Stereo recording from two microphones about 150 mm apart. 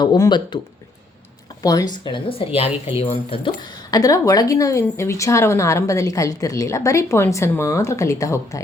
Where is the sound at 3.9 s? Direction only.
25° left (ahead or behind).